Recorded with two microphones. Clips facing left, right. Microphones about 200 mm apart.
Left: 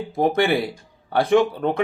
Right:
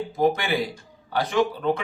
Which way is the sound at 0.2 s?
60° left (ahead or behind).